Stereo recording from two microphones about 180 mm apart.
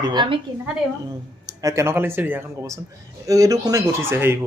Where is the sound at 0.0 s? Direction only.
25° right (ahead or behind).